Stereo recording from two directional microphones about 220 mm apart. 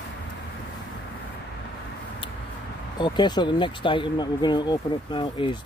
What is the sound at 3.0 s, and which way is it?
Speech, 20° left (ahead or behind).